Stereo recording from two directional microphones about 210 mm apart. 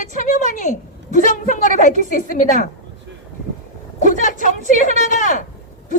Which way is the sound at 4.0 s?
35° left (ahead or behind).